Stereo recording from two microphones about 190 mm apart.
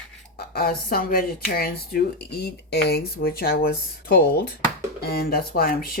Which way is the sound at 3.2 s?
50° left (ahead or behind).